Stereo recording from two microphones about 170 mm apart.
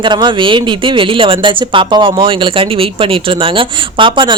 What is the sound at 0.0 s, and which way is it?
Speech, 25° right (ahead or behind).